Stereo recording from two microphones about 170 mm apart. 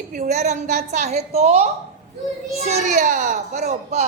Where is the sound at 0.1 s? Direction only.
50° right (ahead or behind).